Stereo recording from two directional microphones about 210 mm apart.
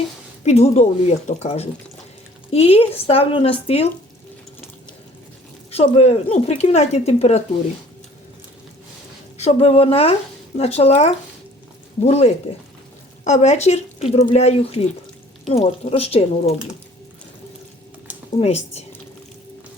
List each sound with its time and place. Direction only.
0.4 s speech: 30° left (ahead or behind)
5.7 s speech: 30° left (ahead or behind)
9.4 s speech: 30° left (ahead or behind)
18.3 s speech: 30° left (ahead or behind)